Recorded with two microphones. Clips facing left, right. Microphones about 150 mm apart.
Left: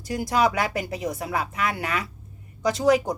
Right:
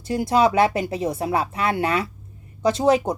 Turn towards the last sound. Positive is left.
turn(degrees=-25)  # may be behind; listen again after turning